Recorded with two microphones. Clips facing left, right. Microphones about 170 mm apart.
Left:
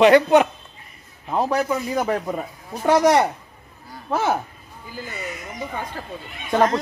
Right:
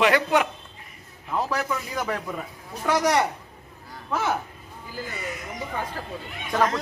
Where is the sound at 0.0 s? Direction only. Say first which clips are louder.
Left 7 dB; 25° left (ahead or behind).